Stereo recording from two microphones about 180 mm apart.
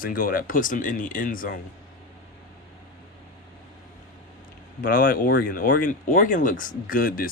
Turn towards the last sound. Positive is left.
turn(degrees=55)  # may be behind; listen again after turning